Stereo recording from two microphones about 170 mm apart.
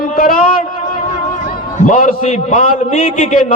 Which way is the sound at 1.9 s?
50° left (ahead or behind).